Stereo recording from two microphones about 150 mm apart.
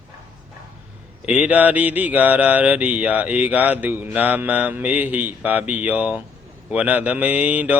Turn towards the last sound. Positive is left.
turn(degrees=-10)  # may be behind; listen again after turning